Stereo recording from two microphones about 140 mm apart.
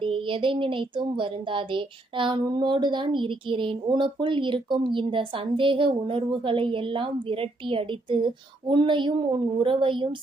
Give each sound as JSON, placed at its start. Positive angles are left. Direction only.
{"t": 0.0, "sound": "speech", "side_deg": -40}